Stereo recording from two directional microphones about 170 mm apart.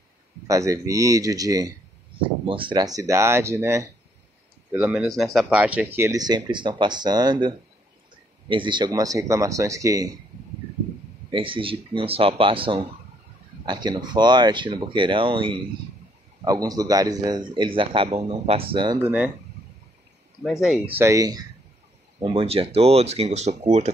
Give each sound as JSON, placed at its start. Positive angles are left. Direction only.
{"t": 0.5, "sound": "speech", "side_deg": -20}
{"t": 2.2, "sound": "speech", "side_deg": -30}
{"t": 4.7, "sound": "speech", "side_deg": -5}
{"t": 11.3, "sound": "speech", "side_deg": -30}
{"t": 19.0, "sound": "speech", "side_deg": -10}
{"t": 21.0, "sound": "speech", "side_deg": -20}
{"t": 22.2, "sound": "speech", "side_deg": -35}